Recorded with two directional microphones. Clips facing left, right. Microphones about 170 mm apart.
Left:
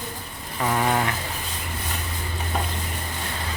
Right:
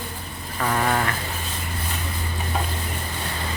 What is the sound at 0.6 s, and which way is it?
Speech, 10° left (ahead or behind).